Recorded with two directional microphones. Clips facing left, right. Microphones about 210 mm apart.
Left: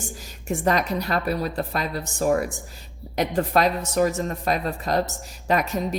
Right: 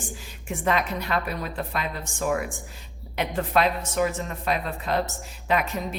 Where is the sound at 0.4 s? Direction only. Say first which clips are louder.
Left 3 dB; 40° left (ahead or behind).